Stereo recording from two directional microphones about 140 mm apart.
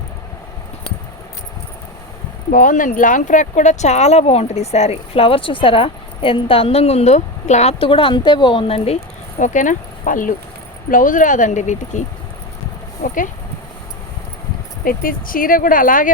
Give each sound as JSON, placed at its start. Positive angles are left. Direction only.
{"t": 2.5, "sound": "speech", "side_deg": 75}
{"t": 9.4, "sound": "speech", "side_deg": 65}
{"t": 14.8, "sound": "speech", "side_deg": 90}